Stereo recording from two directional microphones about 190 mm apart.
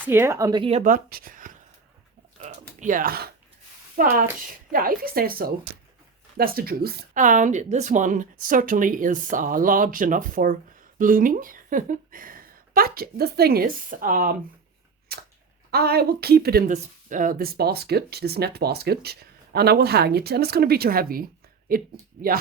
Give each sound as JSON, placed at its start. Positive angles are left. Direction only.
{"t": 0.0, "sound": "speech", "side_deg": -10}
{"t": 0.8, "sound": "speech", "side_deg": -45}
{"t": 2.4, "sound": "a sound", "side_deg": -40}
{"t": 3.9, "sound": "speech", "side_deg": -45}
{"t": 15.1, "sound": "chewing", "side_deg": -55}
{"t": 15.7, "sound": "speech", "side_deg": -55}
{"t": 16.7, "sound": "speech", "side_deg": -45}